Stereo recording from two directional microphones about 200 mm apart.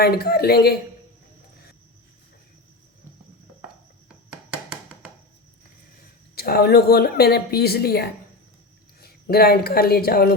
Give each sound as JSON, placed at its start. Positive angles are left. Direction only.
{"t": 0.0, "sound": "a woman's voice", "side_deg": 50}
{"t": 6.3, "sound": "a woman's voice", "side_deg": 50}